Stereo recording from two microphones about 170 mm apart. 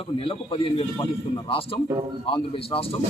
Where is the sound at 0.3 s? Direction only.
30° left (ahead or behind).